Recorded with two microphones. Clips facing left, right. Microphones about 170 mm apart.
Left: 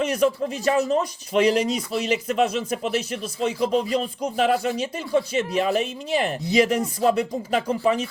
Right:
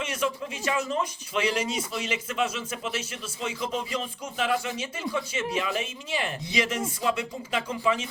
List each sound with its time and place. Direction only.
0.0 s speech: 40° left (ahead or behind)